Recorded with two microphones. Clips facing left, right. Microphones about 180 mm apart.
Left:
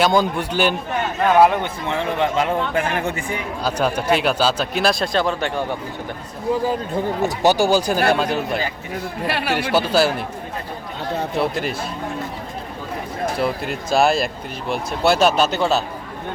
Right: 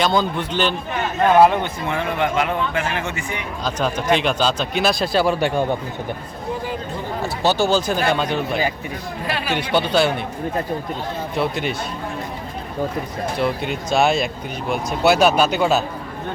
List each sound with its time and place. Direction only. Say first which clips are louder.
0.0 s speech: left 2 dB; 10° left (ahead or behind)
1.6 s speech: even; 25° left (ahead or behind)
3.6 s speech: left 2 dB; 10° left (ahead or behind); by 5.6 s 10° right (ahead or behind)
7.2 s speech: left 2 dB; 15° left (ahead or behind)
9.2 s speech: left 2 dB; 65° left (ahead or behind)
9.6 s speech: even; 5° left (ahead or behind)
11.3 s speech: right 1 dB; centre (ahead or behind)
13.4 s speech: right 4 dB; centre (ahead or behind)